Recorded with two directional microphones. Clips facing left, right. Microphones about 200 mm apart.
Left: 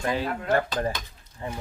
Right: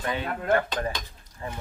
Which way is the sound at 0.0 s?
30° left (ahead or behind).